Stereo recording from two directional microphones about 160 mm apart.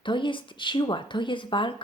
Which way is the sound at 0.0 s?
30° left (ahead or behind).